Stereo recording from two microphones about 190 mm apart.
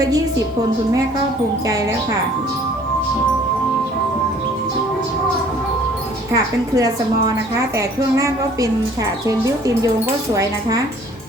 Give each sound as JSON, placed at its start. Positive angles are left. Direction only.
{"t": 6.3, "sound": "a woman's voice", "side_deg": -20}